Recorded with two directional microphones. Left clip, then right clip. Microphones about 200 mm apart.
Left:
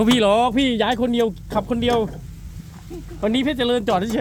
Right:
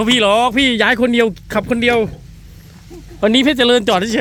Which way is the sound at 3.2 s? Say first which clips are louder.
Right 8 dB; 35° right (ahead or behind).